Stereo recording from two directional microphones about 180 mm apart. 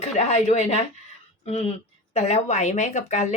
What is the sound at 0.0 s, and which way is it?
Speech, 40° left (ahead or behind).